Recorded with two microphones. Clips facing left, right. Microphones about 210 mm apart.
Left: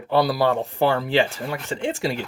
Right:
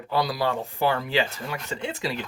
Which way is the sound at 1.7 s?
35° left (ahead or behind).